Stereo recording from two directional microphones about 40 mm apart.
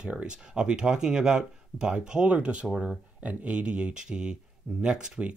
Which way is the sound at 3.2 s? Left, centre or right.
Right.